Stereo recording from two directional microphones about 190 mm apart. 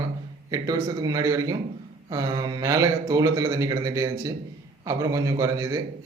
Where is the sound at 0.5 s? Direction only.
20° right (ahead or behind).